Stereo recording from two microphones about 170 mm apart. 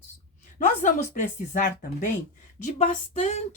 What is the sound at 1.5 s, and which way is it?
Speech, 55° left (ahead or behind).